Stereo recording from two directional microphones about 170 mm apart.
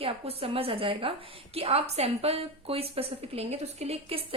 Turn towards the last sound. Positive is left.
turn(degrees=-35)  # may be behind; listen again after turning